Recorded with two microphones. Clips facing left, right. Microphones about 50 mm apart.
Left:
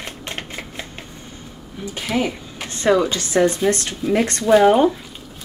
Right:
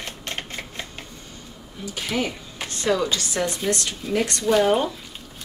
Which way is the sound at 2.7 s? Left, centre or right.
Left.